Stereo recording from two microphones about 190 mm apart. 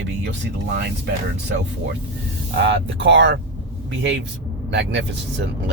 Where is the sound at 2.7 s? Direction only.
70° right (ahead or behind).